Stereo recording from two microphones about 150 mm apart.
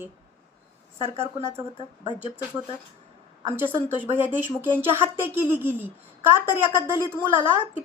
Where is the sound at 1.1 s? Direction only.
15° right (ahead or behind).